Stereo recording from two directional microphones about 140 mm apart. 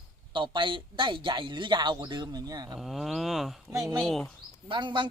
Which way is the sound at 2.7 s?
Centre (ahead or behind).